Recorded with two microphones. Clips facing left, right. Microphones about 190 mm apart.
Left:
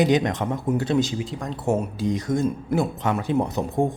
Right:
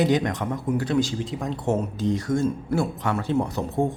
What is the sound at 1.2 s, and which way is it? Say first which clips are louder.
Speech: right 1 dB; centre (ahead or behind).